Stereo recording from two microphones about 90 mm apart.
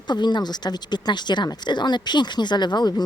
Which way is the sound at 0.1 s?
55° left (ahead or behind).